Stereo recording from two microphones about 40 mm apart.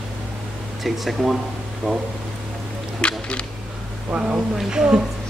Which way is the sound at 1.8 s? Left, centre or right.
Right.